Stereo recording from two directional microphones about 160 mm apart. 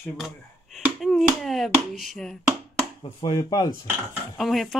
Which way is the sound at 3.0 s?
25° left (ahead or behind).